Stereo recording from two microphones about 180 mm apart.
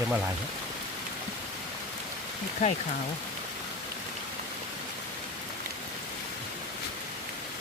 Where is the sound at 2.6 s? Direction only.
45° left (ahead or behind).